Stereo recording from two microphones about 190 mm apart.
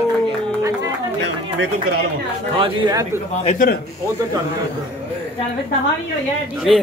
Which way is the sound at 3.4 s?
45° left (ahead or behind).